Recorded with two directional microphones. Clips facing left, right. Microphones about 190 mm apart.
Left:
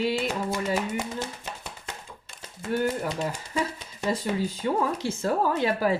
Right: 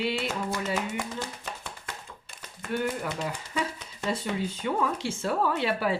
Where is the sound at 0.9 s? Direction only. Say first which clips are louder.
Left 3 dB; 20° left (ahead or behind).